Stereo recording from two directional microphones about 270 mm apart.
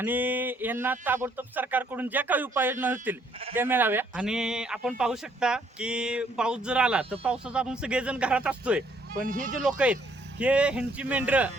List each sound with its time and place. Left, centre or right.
0.0 s a sound: centre
3.5 s a man's voice: centre
9.2 s speech: right
9.6 s a man's voice: centre